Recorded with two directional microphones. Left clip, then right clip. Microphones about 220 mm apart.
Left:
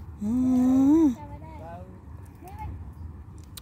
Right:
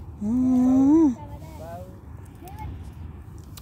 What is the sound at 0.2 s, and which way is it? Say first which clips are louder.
Snoring: right 2 dB; 10° left (ahead or behind).